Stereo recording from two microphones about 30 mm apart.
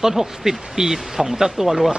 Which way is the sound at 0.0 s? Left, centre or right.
Centre.